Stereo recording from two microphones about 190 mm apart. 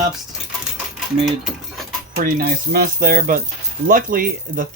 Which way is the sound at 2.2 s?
50° right (ahead or behind).